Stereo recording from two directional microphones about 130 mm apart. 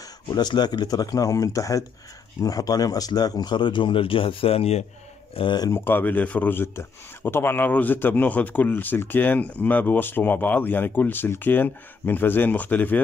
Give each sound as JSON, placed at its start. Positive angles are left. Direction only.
{"t": 0.3, "sound": "speech", "side_deg": 35}
{"t": 5.3, "sound": "speech", "side_deg": 40}
{"t": 5.7, "sound": "speech", "side_deg": 15}